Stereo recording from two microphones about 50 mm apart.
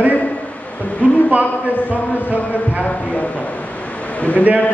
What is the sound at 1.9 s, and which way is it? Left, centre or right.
A man's voice, left.